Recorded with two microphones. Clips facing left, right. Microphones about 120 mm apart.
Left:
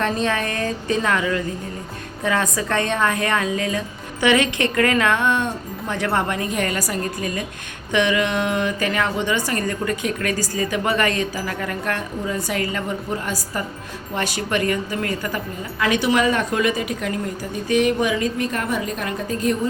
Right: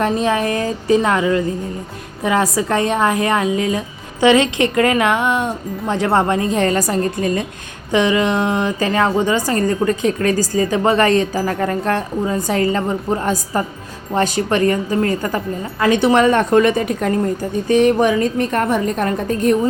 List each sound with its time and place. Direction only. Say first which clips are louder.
0.0 s speech: right 5 dB; 20° right (ahead or behind)
2.6 s a woman's voice: right 4 dB; 20° right (ahead or behind)
7.9 s speech: right 4 dB; 25° right (ahead or behind)
9.1 s a woman's voice: right 6 dB; 45° right (ahead or behind)
9.5 s a woman's voice: right 7 dB; 30° right (ahead or behind)
13.1 s a woman's voice: right 7 dB; 45° right (ahead or behind)